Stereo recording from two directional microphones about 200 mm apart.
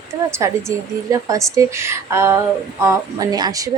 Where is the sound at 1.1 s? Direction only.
15° right (ahead or behind).